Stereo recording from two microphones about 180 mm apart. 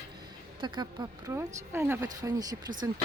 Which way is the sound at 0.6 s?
25° right (ahead or behind).